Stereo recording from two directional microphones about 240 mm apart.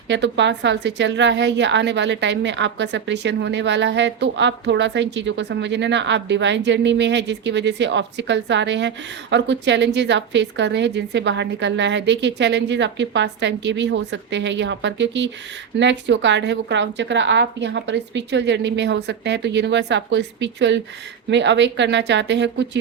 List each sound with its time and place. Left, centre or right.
0.1 s a woman's voice: right